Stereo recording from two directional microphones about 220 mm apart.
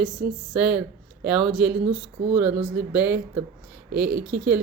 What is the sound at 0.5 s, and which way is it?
Speech, 5° right (ahead or behind).